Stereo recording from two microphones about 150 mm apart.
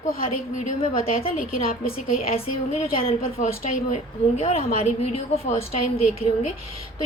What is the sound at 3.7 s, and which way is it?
A woman's voice, 50° left (ahead or behind).